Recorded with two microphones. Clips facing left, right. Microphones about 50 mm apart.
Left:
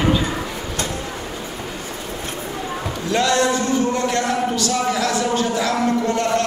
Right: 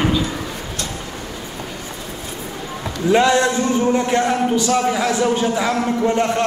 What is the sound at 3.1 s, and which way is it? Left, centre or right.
A man's voice, centre.